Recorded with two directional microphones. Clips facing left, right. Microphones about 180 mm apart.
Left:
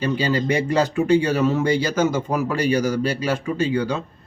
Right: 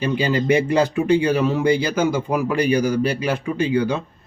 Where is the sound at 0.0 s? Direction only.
15° right (ahead or behind).